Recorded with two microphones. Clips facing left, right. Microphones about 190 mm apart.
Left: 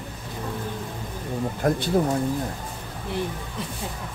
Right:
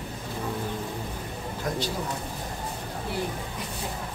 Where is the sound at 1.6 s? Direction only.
55° left (ahead or behind).